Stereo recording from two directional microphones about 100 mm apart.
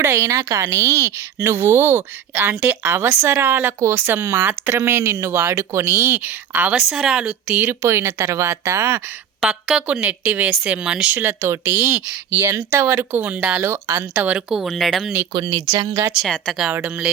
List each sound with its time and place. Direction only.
0.0 s a woman's voice: 25° right (ahead or behind)
6.7 s a woman's voice: 5° right (ahead or behind); by 9.0 s 25° right (ahead or behind)
9.4 s speech: 5° right (ahead or behind)
11.2 s a woman's voice: 25° right (ahead or behind)
14.3 s speech: 5° right (ahead or behind)
15.3 s speech: 50° right (ahead or behind)
16.2 s speech: centre (ahead or behind)
16.7 s speech: 15° right (ahead or behind)